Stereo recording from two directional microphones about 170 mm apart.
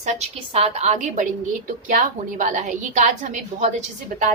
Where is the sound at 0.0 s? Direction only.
40° right (ahead or behind).